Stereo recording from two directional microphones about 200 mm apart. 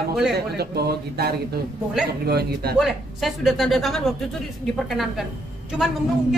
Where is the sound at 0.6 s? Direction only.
50° right (ahead or behind).